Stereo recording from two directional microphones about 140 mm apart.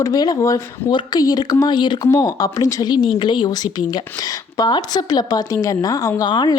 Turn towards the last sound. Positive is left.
turn(degrees=35)  # may be behind; listen again after turning